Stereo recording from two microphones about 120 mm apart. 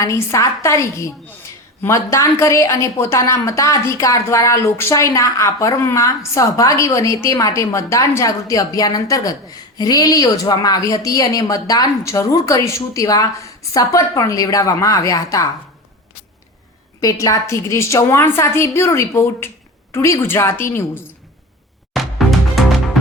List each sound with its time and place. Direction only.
0.0 s a woman's voice: 25° left (ahead or behind)
17.0 s a woman's voice: 30° left (ahead or behind)
21.9 s music: centre (ahead or behind)